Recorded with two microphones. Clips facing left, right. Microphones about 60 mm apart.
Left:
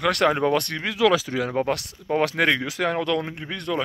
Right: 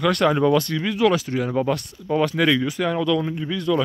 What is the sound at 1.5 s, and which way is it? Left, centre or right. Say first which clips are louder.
Speech: right 2 dB; left.